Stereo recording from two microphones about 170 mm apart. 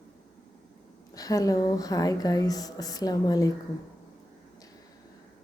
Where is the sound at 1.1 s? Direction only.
20° left (ahead or behind).